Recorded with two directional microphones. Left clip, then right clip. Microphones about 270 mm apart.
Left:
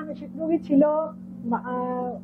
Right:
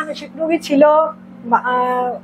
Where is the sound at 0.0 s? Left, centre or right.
Centre.